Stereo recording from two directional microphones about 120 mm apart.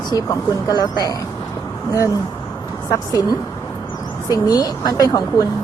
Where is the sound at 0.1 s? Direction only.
30° left (ahead or behind).